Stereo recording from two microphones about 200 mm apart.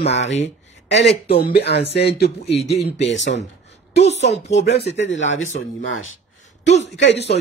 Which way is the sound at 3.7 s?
60° left (ahead or behind).